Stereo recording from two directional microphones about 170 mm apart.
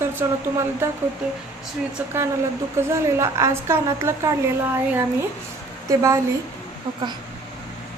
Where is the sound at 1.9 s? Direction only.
15° right (ahead or behind).